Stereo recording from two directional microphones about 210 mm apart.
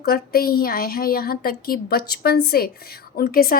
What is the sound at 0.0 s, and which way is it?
Speech, 45° left (ahead or behind).